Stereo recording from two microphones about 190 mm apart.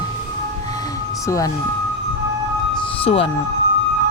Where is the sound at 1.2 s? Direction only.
15° left (ahead or behind).